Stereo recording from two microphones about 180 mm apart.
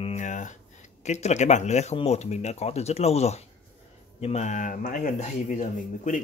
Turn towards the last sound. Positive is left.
turn(degrees=45)  # may be behind; listen again after turning